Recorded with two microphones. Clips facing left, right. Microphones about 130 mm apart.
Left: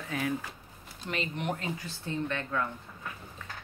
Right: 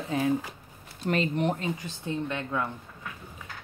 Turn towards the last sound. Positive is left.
turn(degrees=-10)  # may be behind; listen again after turning